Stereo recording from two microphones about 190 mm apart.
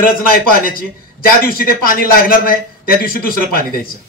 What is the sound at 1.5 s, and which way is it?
A man's voice, 50° left (ahead or behind).